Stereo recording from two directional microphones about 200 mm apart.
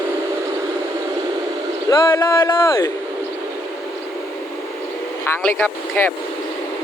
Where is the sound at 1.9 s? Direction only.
20° left (ahead or behind).